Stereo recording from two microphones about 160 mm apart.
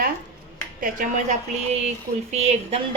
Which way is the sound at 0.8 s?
50° right (ahead or behind).